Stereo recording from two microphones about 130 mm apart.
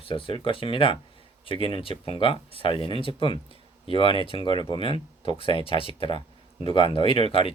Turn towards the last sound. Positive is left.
turn(degrees=45)  # may be behind; listen again after turning